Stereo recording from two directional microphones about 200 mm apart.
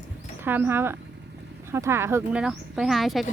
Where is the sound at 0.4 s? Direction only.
10° right (ahead or behind).